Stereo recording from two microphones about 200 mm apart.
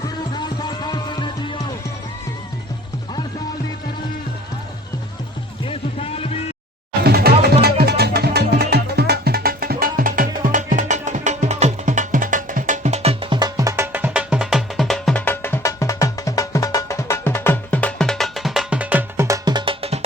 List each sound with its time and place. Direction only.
0.3 s music: 20° left (ahead or behind)
5.6 s music: 30° left (ahead or behind)
7.0 s music: 50° right (ahead or behind); by 20.1 s 30° right (ahead or behind)